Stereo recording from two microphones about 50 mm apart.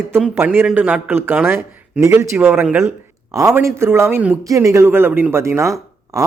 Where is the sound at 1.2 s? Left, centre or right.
Right.